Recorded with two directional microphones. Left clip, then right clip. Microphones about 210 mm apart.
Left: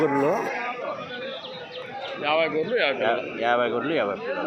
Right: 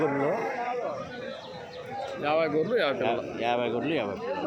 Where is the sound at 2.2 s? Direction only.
55° right (ahead or behind).